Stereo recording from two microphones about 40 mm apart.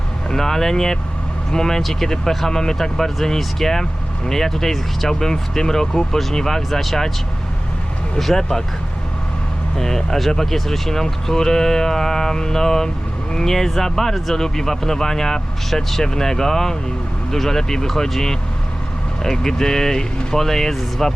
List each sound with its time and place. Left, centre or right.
0.3 s speech: centre
8.2 s speech: centre
9.7 s speech: centre